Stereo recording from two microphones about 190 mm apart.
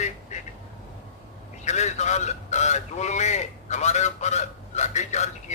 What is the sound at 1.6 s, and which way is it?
A man's voice, 35° left (ahead or behind).